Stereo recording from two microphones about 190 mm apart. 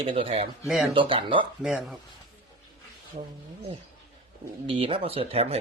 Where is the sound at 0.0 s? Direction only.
30° right (ahead or behind).